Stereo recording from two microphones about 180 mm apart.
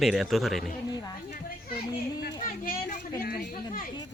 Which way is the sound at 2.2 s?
55° left (ahead or behind).